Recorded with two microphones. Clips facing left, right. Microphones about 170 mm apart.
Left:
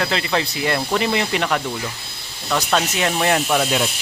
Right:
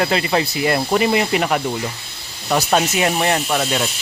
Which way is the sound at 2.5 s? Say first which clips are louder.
Right 3 dB; 20° right (ahead or behind).